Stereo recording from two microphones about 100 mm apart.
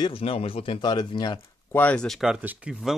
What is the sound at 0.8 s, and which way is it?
Speech, 45° left (ahead or behind).